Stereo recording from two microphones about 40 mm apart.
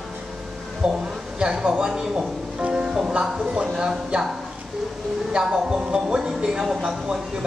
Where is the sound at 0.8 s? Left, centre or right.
Centre.